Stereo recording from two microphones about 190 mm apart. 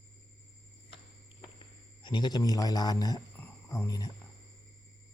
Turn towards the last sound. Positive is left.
turn(degrees=20)  # may be behind; listen again after turning